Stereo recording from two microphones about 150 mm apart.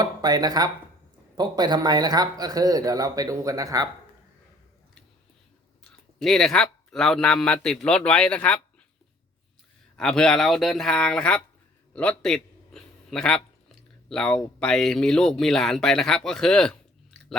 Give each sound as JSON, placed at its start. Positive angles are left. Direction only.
{"t": 0.0, "sound": "speech", "side_deg": -25}
{"t": 5.8, "sound": "speech", "side_deg": 5}
{"t": 10.0, "sound": "a man's voice", "side_deg": 5}